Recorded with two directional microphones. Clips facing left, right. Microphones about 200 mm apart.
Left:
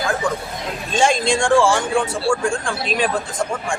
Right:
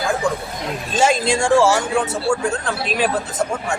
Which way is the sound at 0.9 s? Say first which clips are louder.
Even; 5° right (ahead or behind).